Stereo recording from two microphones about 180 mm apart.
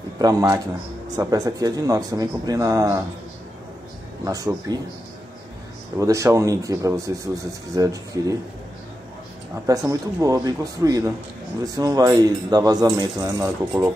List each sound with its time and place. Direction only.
0.2 s speech: 20° right (ahead or behind)
4.2 s speech: 20° right (ahead or behind)
5.9 s speech: 15° right (ahead or behind)
9.7 s speech: 20° right (ahead or behind)